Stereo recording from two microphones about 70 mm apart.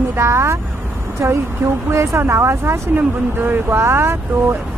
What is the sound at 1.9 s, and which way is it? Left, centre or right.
Speech, right.